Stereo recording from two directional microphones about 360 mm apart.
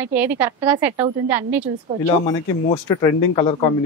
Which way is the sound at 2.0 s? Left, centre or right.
Centre.